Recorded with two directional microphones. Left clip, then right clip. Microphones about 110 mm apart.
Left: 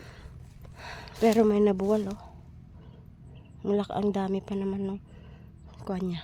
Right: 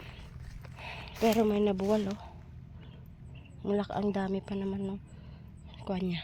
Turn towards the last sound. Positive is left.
turn(degrees=30)  # may be behind; listen again after turning